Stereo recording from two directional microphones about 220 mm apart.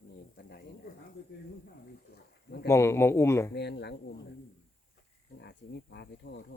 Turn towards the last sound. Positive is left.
turn(degrees=50)  # may be behind; listen again after turning